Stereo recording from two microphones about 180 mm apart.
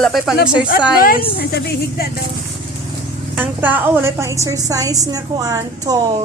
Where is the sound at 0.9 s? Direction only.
55° left (ahead or behind).